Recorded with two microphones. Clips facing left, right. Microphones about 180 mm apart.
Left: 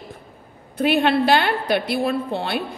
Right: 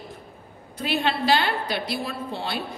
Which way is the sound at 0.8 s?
60° left (ahead or behind).